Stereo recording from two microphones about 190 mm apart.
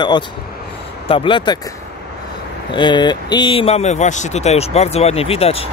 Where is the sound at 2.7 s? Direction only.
25° left (ahead or behind).